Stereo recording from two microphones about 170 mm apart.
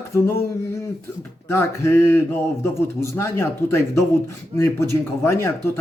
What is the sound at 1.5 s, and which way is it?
A man's voice, 15° left (ahead or behind).